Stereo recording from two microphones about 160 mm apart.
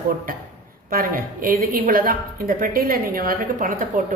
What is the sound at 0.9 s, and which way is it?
A woman's voice, 65° right (ahead or behind).